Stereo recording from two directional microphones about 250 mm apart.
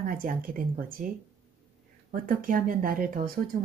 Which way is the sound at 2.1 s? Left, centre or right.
Right.